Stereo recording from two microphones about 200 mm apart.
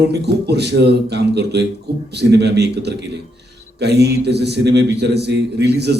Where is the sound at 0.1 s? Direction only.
55° right (ahead or behind).